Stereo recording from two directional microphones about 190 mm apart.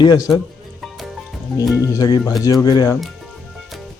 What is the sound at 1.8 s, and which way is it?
Speech, 20° left (ahead or behind).